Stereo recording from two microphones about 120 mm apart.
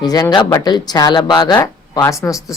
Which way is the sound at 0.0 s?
30° left (ahead or behind).